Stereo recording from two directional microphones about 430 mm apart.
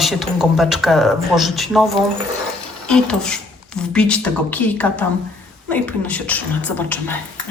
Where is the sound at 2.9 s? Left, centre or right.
Centre.